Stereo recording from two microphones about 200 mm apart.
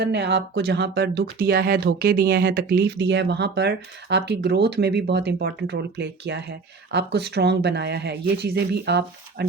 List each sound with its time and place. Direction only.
0.0 s speech: 60° right (ahead or behind)